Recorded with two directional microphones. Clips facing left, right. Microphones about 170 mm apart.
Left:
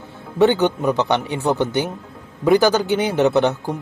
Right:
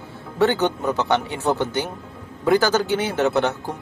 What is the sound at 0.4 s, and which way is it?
Speech, 15° left (ahead or behind).